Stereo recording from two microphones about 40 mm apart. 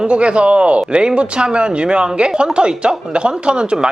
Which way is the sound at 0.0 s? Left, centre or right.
Right.